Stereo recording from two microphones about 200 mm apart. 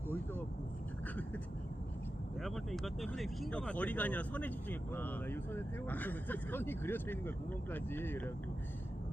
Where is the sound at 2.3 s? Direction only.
Centre (ahead or behind).